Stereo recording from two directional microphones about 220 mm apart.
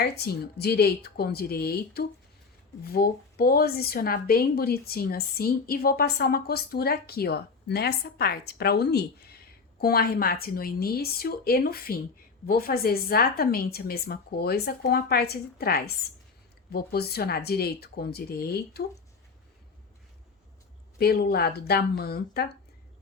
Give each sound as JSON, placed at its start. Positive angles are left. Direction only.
{"t": 0.0, "sound": "speech", "side_deg": 45}
{"t": 21.0, "sound": "speech", "side_deg": 45}